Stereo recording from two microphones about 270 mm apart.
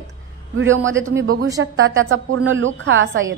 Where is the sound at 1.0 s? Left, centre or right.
Right.